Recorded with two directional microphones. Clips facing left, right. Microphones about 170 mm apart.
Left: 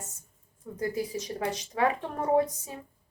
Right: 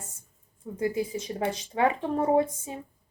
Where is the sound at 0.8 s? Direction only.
25° right (ahead or behind).